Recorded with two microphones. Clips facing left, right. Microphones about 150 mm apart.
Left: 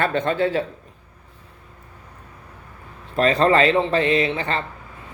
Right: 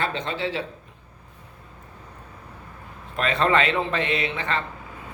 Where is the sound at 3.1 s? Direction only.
35° left (ahead or behind).